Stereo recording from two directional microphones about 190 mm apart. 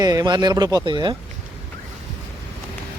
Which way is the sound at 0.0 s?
20° right (ahead or behind).